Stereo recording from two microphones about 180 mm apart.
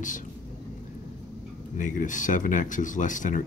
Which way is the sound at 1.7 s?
45° left (ahead or behind).